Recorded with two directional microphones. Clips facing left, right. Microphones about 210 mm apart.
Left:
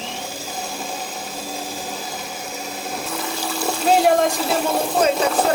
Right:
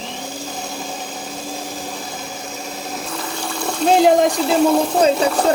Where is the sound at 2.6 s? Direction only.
5° left (ahead or behind).